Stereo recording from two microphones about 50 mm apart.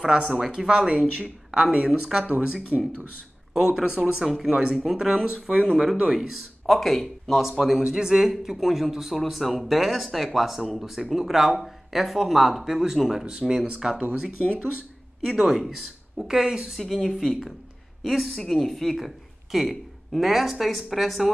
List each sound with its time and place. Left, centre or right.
0.0 s speech: centre
3.5 s speech: centre
15.2 s speech: centre
16.3 s speech: centre